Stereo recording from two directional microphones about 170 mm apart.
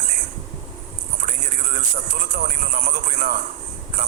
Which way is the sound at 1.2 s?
45° right (ahead or behind).